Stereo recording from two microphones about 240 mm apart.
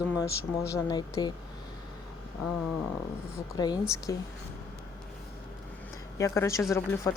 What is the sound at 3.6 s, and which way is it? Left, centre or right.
Speech, centre.